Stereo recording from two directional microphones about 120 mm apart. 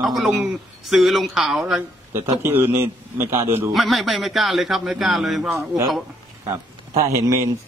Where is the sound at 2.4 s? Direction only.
20° right (ahead or behind).